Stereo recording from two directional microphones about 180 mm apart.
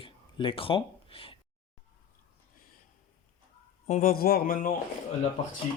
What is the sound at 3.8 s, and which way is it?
Speech, 50° left (ahead or behind).